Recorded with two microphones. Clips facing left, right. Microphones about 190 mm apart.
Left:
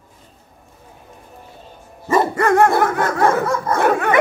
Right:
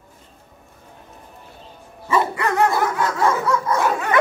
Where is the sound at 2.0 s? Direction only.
45° left (ahead or behind).